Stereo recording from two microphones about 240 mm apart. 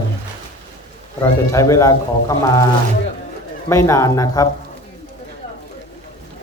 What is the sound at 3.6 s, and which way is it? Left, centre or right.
Speech, centre.